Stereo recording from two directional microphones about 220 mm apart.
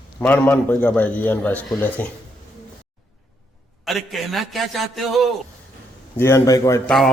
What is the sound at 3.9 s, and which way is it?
A man's voice, centre (ahead or behind).